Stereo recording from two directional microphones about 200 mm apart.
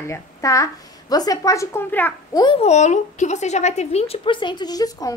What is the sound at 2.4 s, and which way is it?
Speech, 30° left (ahead or behind).